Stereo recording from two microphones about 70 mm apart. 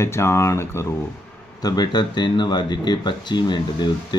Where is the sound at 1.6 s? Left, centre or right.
Left.